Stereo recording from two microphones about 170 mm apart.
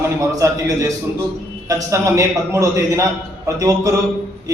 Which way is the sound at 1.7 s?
20° right (ahead or behind).